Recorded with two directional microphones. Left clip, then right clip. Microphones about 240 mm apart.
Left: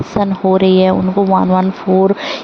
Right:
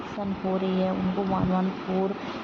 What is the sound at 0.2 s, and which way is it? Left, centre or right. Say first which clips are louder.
A woman's voice: left 17 dB; left.